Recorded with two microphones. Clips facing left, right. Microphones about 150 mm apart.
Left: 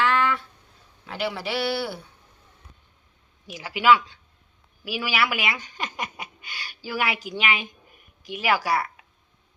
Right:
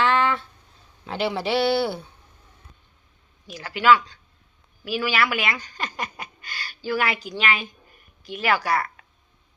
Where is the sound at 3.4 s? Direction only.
10° left (ahead or behind).